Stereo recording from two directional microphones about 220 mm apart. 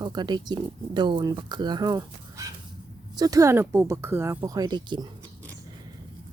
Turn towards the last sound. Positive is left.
turn(degrees=-20)  # may be behind; listen again after turning